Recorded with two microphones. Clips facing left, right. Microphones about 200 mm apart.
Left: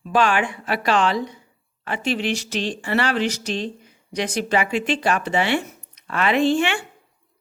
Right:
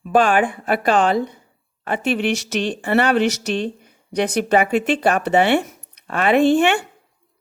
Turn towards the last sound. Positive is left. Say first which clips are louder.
# right 5 dB
turn(degrees=-55)  # may be behind; listen again after turning